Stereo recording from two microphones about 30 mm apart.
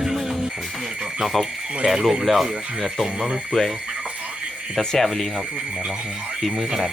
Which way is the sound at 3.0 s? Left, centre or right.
Centre.